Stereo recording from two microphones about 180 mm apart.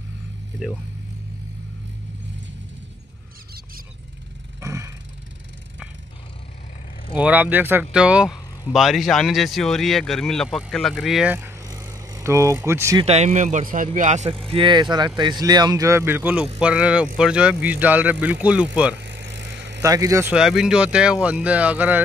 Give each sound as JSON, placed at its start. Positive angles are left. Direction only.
{"t": 0.6, "sound": "speech", "side_deg": -5}
{"t": 4.6, "sound": "a sound", "side_deg": -15}
{"t": 7.2, "sound": "speech", "side_deg": -10}
{"t": 11.3, "sound": "vehicle", "side_deg": -15}
{"t": 13.0, "sound": "speech", "side_deg": -35}
{"t": 14.5, "sound": "speech", "side_deg": -25}
{"t": 18.9, "sound": "vehicle", "side_deg": -70}
{"t": 19.8, "sound": "speech", "side_deg": -20}
{"t": 20.3, "sound": "speech", "side_deg": -5}